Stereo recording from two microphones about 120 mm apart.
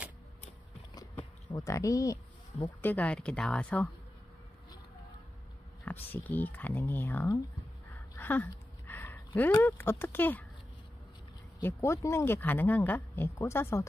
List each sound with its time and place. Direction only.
1.5 s speech: 30° left (ahead or behind)
2.8 s speech: 15° left (ahead or behind)
5.9 s speech: 15° left (ahead or behind)
11.6 s speech: 25° left (ahead or behind)